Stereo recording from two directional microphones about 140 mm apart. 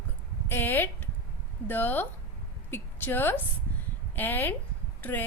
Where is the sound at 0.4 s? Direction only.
15° left (ahead or behind).